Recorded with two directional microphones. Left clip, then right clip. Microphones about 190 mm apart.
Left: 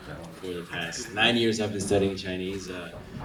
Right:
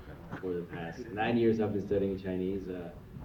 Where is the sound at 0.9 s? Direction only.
65° left (ahead or behind).